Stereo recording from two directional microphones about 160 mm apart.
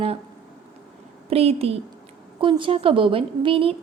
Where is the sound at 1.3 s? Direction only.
40° right (ahead or behind).